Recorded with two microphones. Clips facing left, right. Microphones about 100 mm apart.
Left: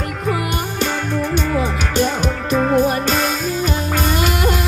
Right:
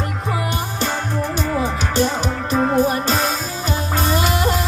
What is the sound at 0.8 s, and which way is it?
Music, 35° right (ahead or behind).